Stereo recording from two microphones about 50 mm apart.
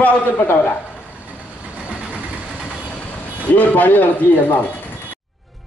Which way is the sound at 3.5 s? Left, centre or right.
Left.